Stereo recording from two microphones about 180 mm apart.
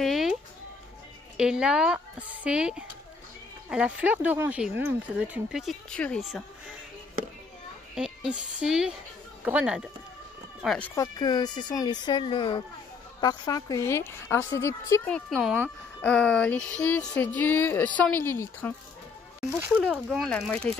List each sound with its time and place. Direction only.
0.0 s music: centre (ahead or behind)
1.3 s speech: 5° right (ahead or behind)
7.9 s speech: 5° right (ahead or behind)
11.0 s speech: 20° left (ahead or behind)
15.1 s speech: 5° left (ahead or behind)
19.8 s speech: centre (ahead or behind)